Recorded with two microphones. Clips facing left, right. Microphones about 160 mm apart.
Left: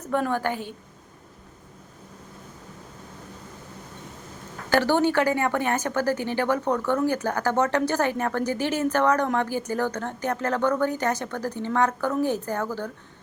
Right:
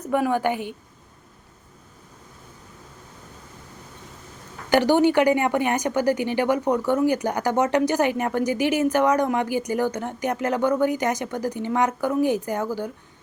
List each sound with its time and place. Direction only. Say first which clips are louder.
0.0 s a woman's voice: right 3 dB; 10° right (ahead or behind)
4.7 s a woman's voice: right 3 dB; 15° right (ahead or behind)